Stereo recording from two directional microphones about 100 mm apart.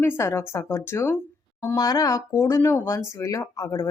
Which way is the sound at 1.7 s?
40° left (ahead or behind).